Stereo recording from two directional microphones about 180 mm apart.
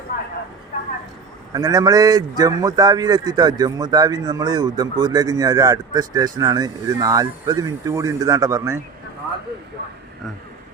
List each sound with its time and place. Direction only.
1.5 s a man's voice: 20° right (ahead or behind)